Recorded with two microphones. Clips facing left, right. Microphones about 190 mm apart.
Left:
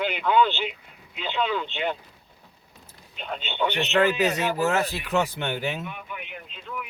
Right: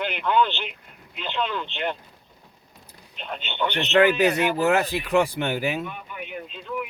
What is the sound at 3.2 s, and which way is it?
Speech, 5° left (ahead or behind).